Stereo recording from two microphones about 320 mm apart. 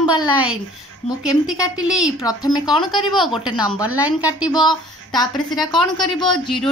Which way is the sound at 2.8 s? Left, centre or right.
Centre.